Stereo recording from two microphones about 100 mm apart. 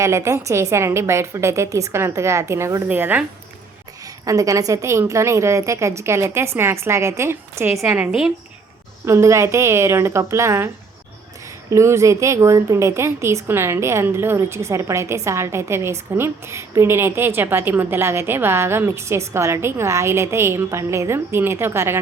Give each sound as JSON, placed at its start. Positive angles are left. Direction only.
{"t": 0.0, "sound": "a woman's voice", "side_deg": -30}
{"t": 4.0, "sound": "a woman's voice", "side_deg": -35}
{"t": 9.0, "sound": "a woman's voice", "side_deg": -30}
{"t": 11.7, "sound": "a woman's voice", "side_deg": -30}